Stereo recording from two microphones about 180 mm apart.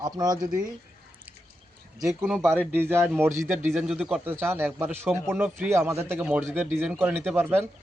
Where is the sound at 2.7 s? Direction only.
15° right (ahead or behind).